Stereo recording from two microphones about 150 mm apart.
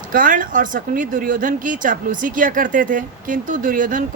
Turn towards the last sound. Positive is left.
turn(degrees=-65)  # may be behind; listen again after turning